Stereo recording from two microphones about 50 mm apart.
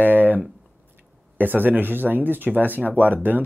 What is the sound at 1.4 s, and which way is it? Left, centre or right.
Speech, right.